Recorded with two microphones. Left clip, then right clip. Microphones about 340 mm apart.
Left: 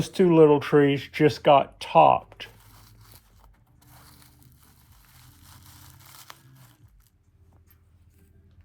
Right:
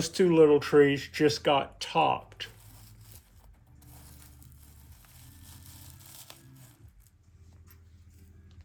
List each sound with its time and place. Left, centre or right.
0.0 s speech: centre
5.2 s crumpling: centre